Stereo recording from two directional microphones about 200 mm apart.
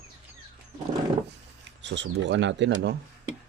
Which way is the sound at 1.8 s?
60° right (ahead or behind).